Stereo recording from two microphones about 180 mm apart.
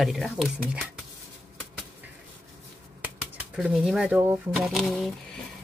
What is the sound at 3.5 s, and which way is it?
Speech, 5° right (ahead or behind).